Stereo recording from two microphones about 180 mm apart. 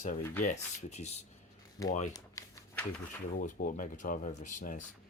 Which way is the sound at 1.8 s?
20° left (ahead or behind).